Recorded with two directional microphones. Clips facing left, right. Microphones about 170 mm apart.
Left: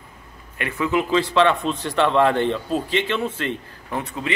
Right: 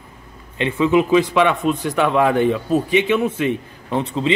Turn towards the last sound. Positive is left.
turn(degrees=-25)  # may be behind; listen again after turning